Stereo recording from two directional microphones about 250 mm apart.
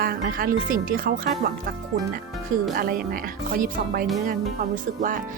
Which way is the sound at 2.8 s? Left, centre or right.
Right.